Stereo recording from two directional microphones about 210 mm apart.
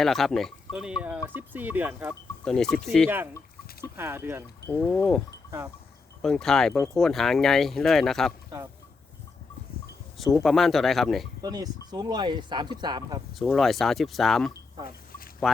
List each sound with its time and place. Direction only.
0.0 s speech: centre (ahead or behind)
2.4 s speech: 5° left (ahead or behind)
3.9 s speech: 10° right (ahead or behind)
4.7 s speech: 5° left (ahead or behind)
5.5 s goat: 15° right (ahead or behind)
6.2 s speech: centre (ahead or behind)
10.2 s speech: centre (ahead or behind)
11.4 s speech: 20° right (ahead or behind)
13.4 s speech: centre (ahead or behind)
14.8 s duck: 45° left (ahead or behind)